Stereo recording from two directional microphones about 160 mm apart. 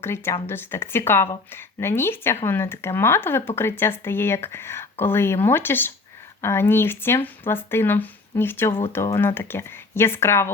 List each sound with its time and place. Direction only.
0.0 s speech: 15° left (ahead or behind)